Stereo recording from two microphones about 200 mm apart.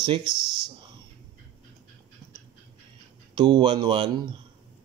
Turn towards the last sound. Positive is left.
turn(degrees=-25)  # may be behind; listen again after turning